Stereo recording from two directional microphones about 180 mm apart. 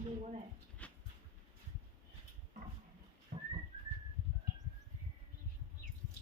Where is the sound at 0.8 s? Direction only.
5° left (ahead or behind).